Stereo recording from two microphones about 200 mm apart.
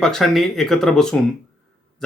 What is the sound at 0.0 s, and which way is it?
Speech, centre (ahead or behind).